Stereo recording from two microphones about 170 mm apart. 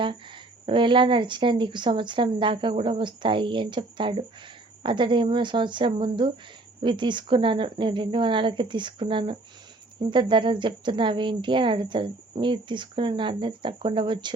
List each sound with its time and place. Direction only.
0.6 s a woman's voice: 30° right (ahead or behind)